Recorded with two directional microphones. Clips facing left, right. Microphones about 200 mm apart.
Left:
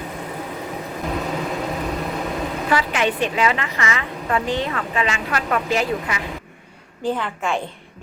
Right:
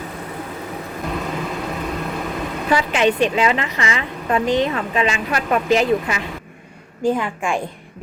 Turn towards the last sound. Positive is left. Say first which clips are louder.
# right 3 dB
turn(degrees=-15)  # may be behind; listen again after turning